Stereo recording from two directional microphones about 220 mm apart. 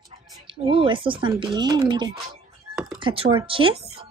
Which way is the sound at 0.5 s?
25° right (ahead or behind).